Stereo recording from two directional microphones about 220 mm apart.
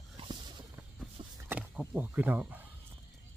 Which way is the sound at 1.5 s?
5° right (ahead or behind).